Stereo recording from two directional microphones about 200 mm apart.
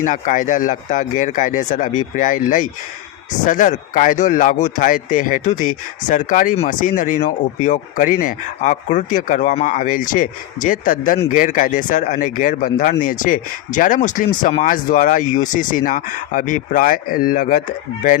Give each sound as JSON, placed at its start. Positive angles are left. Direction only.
{"t": 0.0, "sound": "speech", "side_deg": 40}